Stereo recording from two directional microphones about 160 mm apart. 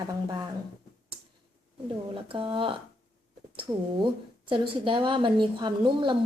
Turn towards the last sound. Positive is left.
turn(degrees=-30)  # may be behind; listen again after turning